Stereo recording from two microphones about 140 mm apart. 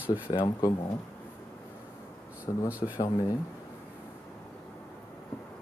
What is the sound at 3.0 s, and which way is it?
Speech, 30° left (ahead or behind).